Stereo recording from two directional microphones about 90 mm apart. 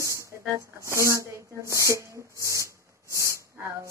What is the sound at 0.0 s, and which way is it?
Speech, 35° right (ahead or behind).